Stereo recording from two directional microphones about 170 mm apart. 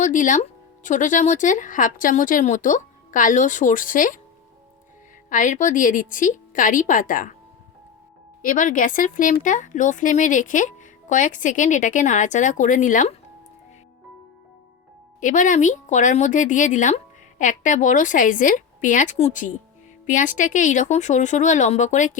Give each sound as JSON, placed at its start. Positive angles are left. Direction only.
{"t": 0.0, "sound": "a woman's voice", "side_deg": 50}
{"t": 5.3, "sound": "a woman's voice", "side_deg": 50}
{"t": 8.4, "sound": "a woman's voice", "side_deg": 50}
{"t": 15.2, "sound": "a woman's voice", "side_deg": 50}